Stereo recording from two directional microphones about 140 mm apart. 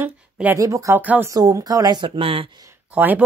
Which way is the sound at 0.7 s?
20° right (ahead or behind).